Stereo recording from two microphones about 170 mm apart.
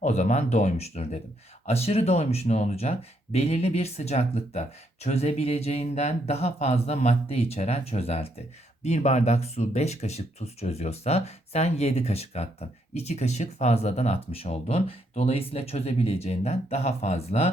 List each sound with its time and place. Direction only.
0.0 s speech: 45° left (ahead or behind)